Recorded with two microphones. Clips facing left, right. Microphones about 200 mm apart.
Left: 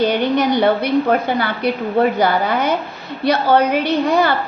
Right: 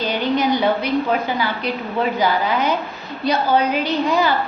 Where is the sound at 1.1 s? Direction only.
60° left (ahead or behind).